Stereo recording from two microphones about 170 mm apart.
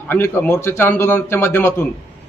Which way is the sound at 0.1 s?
15° left (ahead or behind).